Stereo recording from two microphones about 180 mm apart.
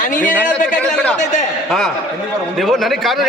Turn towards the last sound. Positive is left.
turn(degrees=0)  # may be behind; listen again after turning